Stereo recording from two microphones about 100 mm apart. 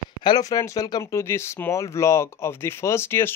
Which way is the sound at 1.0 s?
25° left (ahead or behind).